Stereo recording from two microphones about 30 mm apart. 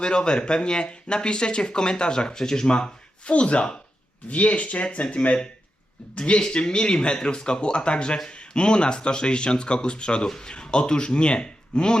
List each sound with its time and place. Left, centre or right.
0.0 s speech: left
2.6 s speech: left
3.3 s speech: left
4.3 s speech: left
6.1 s speech: left